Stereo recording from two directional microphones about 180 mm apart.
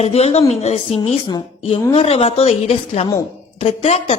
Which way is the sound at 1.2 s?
25° left (ahead or behind).